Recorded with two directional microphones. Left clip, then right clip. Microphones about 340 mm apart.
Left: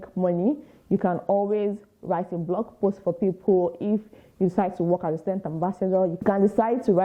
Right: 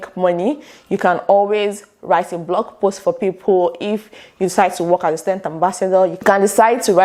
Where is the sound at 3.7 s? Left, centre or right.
Centre.